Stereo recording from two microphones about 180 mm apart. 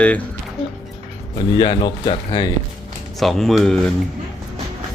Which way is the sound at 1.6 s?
25° left (ahead or behind).